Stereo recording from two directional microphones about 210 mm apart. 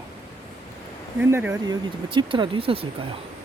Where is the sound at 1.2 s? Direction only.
10° right (ahead or behind); by 2.9 s 25° right (ahead or behind).